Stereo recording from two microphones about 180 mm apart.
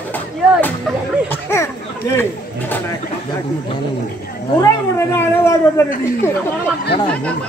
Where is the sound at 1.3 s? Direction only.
15° left (ahead or behind).